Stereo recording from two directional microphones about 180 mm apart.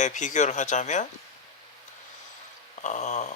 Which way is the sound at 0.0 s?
45° left (ahead or behind).